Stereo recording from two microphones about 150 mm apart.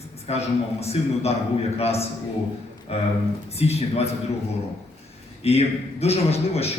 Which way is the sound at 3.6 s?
45° left (ahead or behind).